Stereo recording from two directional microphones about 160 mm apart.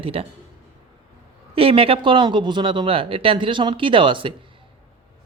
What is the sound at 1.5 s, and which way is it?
Speech, 35° right (ahead or behind).